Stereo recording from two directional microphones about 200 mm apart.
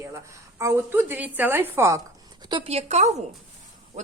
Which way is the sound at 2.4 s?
25° right (ahead or behind).